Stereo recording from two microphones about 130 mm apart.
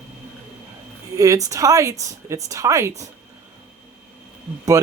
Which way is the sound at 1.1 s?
25° right (ahead or behind).